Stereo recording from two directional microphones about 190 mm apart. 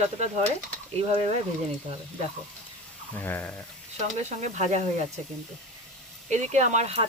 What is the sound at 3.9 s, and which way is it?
Speech, 35° right (ahead or behind).